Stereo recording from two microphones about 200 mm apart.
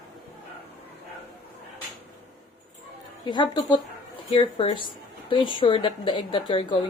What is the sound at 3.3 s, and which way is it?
A woman's voice, 25° left (ahead or behind).